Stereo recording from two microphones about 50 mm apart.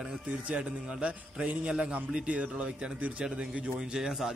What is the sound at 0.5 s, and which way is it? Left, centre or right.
A man's voice, right.